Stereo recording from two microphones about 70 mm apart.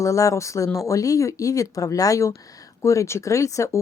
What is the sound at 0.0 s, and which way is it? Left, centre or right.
Speech, left.